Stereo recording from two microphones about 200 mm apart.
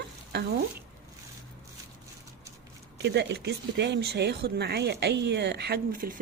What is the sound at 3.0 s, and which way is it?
Speech, 60° right (ahead or behind).